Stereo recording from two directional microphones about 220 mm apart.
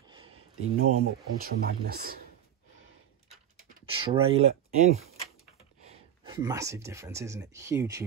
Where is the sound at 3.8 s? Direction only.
25° right (ahead or behind).